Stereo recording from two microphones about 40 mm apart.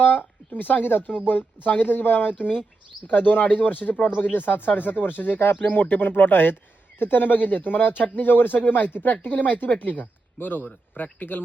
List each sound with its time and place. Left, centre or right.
0.0 s speech: left
10.3 s speech: left